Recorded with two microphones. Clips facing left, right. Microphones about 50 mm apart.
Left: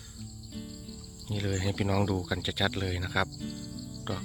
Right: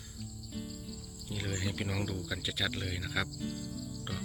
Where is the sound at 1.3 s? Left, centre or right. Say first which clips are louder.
Left 5 dB; centre.